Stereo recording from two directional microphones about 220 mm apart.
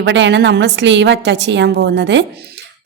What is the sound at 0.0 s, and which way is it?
A woman's voice, 55° right (ahead or behind).